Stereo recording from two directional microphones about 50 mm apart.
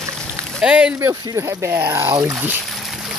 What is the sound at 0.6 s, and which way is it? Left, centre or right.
Speech, centre.